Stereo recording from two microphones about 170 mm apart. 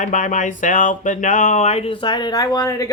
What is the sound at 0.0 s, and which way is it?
Speech, 45° left (ahead or behind).